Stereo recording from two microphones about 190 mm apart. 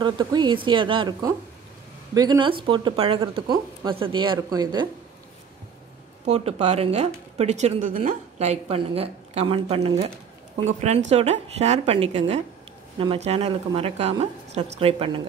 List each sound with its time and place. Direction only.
0.0 s speech: 20° right (ahead or behind)
6.2 s a woman's voice: 35° right (ahead or behind)